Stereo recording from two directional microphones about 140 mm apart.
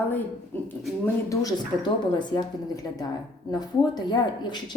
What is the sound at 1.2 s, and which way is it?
A woman's voice, 30° left (ahead or behind).